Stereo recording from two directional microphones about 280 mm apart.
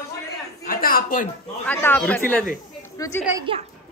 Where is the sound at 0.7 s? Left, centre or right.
Left.